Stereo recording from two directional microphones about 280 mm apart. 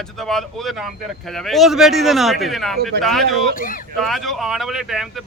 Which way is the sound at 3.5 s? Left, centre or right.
Left.